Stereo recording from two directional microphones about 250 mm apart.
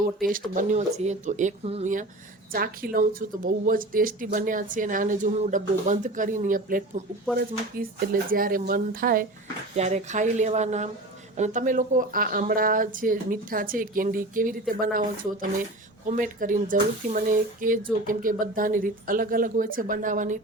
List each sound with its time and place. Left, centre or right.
0.2 s speech: right